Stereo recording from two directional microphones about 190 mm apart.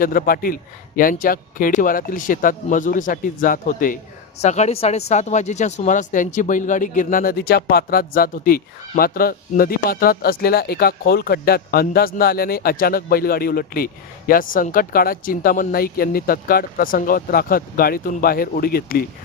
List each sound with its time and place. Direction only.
0.0 s speech: 50° left (ahead or behind)